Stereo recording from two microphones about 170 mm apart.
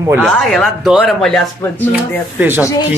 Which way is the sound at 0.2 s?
Centre (ahead or behind).